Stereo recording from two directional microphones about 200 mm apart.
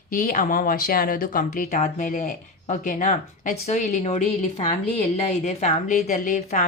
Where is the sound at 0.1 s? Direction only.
45° left (ahead or behind).